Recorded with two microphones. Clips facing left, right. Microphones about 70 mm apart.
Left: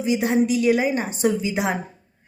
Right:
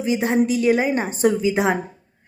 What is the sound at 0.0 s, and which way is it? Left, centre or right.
Speech, right.